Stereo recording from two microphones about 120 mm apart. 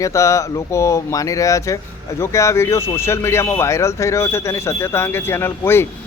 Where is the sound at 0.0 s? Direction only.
25° left (ahead or behind).